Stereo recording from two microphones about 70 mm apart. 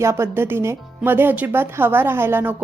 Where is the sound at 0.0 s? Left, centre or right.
Right.